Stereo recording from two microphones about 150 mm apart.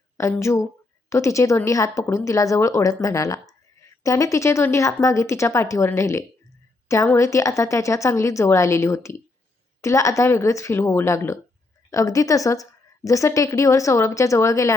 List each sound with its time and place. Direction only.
0.2 s speech: 20° left (ahead or behind)